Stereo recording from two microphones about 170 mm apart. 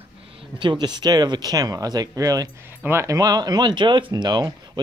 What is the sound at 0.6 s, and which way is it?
Speech, 25° right (ahead or behind).